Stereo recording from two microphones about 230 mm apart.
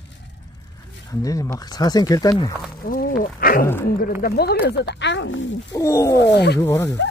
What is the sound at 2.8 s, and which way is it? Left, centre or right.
Wild animals, left.